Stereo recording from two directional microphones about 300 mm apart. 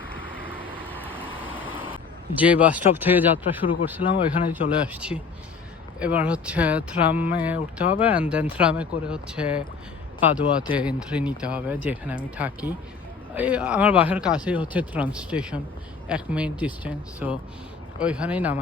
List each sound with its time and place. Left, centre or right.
0.8 s vehicle: centre
1.5 s vehicle: left
2.3 s speech: centre